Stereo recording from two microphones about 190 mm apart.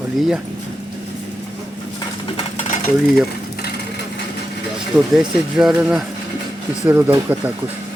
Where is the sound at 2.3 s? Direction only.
35° left (ahead or behind).